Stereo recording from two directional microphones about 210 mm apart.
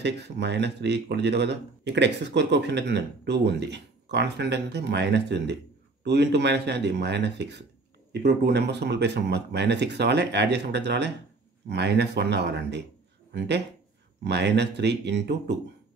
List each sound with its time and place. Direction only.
0.0 s speech: 55° right (ahead or behind)